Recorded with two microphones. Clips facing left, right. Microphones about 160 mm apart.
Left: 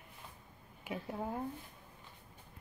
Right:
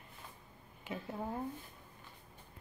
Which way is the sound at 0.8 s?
10° left (ahead or behind).